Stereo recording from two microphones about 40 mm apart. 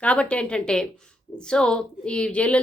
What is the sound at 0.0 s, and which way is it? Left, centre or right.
Speech, left.